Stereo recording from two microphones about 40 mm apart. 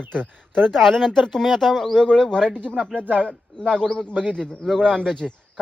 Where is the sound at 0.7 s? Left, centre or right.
Centre.